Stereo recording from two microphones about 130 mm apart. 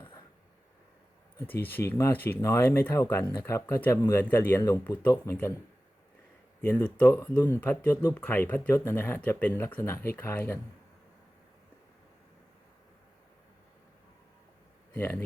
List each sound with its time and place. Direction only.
1.5 s speech: 15° left (ahead or behind)
6.6 s speech: 15° left (ahead or behind)
14.9 s speech: 15° left (ahead or behind)